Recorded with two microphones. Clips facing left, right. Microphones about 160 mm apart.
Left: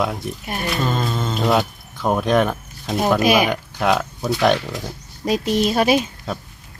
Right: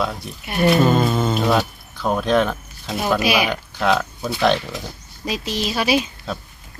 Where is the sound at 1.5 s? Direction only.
15° left (ahead or behind).